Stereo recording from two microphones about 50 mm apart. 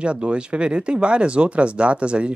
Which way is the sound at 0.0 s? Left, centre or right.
Right.